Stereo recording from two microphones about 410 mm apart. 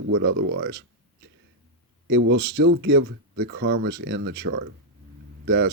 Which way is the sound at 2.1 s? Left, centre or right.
Right.